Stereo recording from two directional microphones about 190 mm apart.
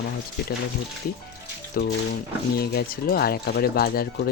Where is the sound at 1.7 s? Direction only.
50° left (ahead or behind).